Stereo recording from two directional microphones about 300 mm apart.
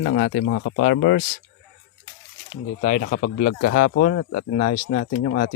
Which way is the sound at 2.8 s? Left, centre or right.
Left.